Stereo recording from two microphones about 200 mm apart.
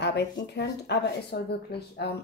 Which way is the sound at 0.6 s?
55° left (ahead or behind).